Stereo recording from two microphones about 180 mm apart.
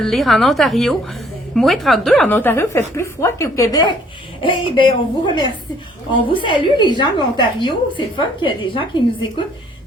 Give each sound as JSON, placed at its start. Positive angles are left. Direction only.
{"t": 0.0, "sound": "a woman's voice", "side_deg": 0}